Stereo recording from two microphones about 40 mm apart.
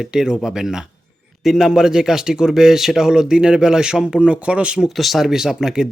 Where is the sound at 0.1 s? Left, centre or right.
Centre.